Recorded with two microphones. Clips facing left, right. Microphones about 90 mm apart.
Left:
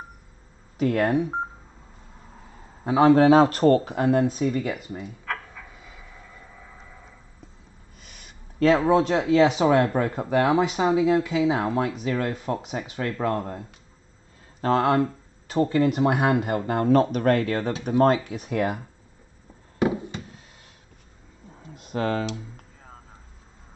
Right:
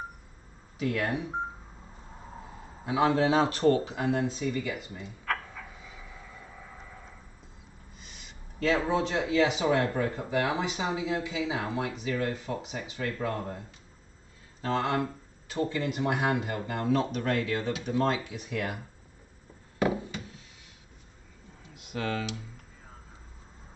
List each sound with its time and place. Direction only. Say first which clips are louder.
0.7 s speech: left 8 dB; 50° left (ahead or behind)
2.8 s speech: left 8 dB; 45° left (ahead or behind)
5.2 s a sound: even; centre (ahead or behind)
6.5 s vehicle: even; 5° right (ahead or behind)
8.0 s speech: left 2 dB; 50° left (ahead or behind)
14.6 s speech: left 8 dB; 50° left (ahead or behind)
21.6 s speech: left 7 dB; 40° left (ahead or behind)